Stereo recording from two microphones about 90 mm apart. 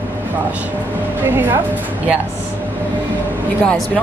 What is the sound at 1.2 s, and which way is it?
Speech, 25° right (ahead or behind).